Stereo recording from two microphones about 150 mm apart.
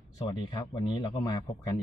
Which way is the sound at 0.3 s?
30° left (ahead or behind).